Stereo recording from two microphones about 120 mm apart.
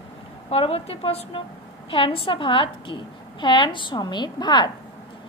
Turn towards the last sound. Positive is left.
turn(degrees=35)  # may be behind; listen again after turning